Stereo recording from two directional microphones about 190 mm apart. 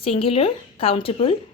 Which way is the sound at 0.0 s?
30° left (ahead or behind).